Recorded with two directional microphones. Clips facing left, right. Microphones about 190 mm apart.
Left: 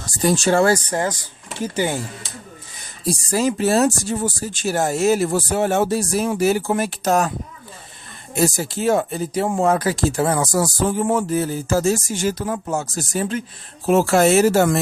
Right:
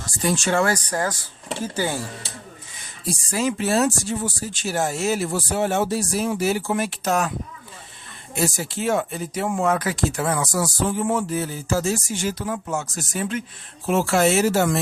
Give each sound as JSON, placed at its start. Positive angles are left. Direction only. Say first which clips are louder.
{"t": 0.1, "sound": "speech", "louder": "left 5 dB", "side_deg": 40}
{"t": 3.0, "sound": "speech", "louder": "left 4 dB", "side_deg": 35}
{"t": 8.4, "sound": "speech", "louder": "left 4 dB", "side_deg": 40}